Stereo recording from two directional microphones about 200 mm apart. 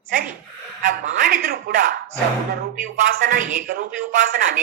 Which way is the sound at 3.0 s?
45° right (ahead or behind).